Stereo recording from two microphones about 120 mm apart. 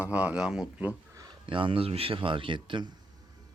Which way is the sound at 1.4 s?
45° right (ahead or behind).